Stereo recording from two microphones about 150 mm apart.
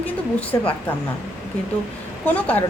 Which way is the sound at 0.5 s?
25° left (ahead or behind).